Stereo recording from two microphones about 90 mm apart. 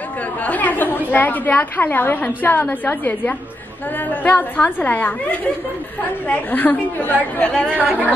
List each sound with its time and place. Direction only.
0.4 s a woman's voice: 15° left (ahead or behind)
6.2 s a woman's voice: 20° left (ahead or behind)
7.7 s speech: 15° right (ahead or behind)